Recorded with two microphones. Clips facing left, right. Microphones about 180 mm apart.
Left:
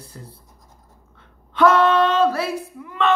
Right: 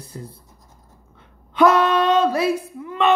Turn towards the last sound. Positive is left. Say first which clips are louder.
# right 2 dB
turn(degrees=-20)  # may be behind; listen again after turning